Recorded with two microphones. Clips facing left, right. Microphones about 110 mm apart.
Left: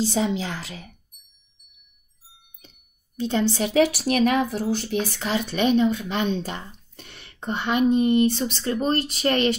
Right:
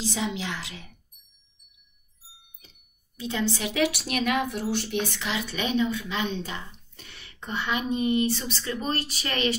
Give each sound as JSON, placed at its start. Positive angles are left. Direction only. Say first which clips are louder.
{"t": 0.0, "sound": "speech", "louder": "left 6 dB", "side_deg": 35}
{"t": 3.2, "sound": "speech", "louder": "left 6 dB", "side_deg": 35}
{"t": 5.9, "sound": "a sound", "louder": "left 5 dB", "side_deg": 40}
{"t": 7.4, "sound": "a woman's voice", "louder": "left 7 dB", "side_deg": 50}